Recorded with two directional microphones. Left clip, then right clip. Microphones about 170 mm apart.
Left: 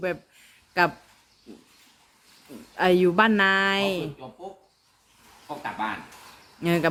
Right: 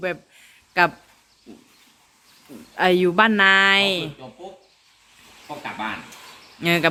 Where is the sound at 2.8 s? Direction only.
Centre (ahead or behind).